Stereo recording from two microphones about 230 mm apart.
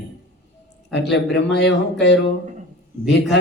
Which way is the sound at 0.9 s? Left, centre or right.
Left.